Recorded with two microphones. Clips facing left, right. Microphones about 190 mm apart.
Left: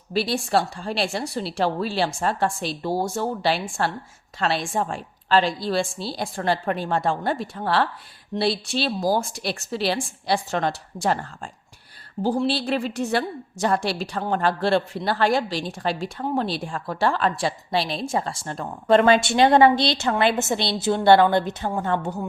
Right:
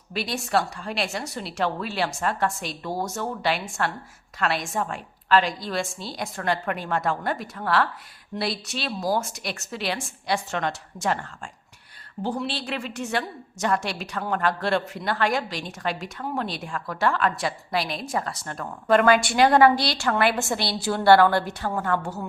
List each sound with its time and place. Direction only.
0.1 s a woman's voice: 30° left (ahead or behind)